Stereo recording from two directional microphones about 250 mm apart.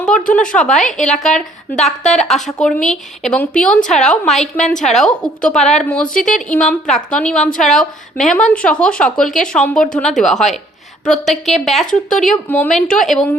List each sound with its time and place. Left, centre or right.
0.0 s a sound: centre
0.3 s a woman's voice: centre
6.1 s a woman's voice: left
6.5 s a woman's voice: centre